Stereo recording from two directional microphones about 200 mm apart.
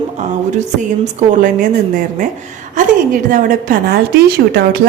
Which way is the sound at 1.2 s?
40° right (ahead or behind).